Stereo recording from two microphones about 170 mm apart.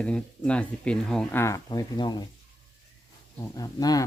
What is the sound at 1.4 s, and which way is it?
Speech, 20° left (ahead or behind).